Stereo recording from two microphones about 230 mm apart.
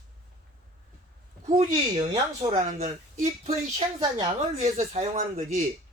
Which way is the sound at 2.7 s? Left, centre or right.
Right.